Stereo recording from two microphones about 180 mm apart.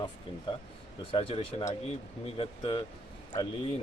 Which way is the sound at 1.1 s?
30° left (ahead or behind).